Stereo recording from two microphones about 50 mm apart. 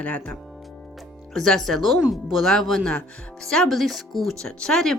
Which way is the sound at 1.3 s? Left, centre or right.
Centre.